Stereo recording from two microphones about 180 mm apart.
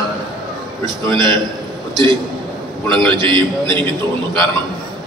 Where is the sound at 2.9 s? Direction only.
25° right (ahead or behind).